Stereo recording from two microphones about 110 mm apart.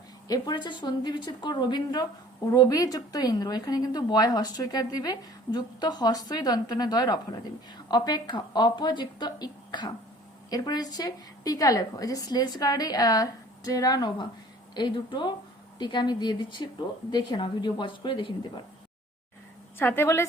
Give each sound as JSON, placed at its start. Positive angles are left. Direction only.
{"t": 0.3, "sound": "a woman's voice", "side_deg": 40}
{"t": 19.8, "sound": "a woman's voice", "side_deg": 20}